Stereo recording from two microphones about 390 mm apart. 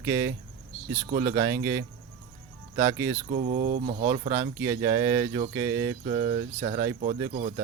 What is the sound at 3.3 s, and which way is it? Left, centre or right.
Speech, centre.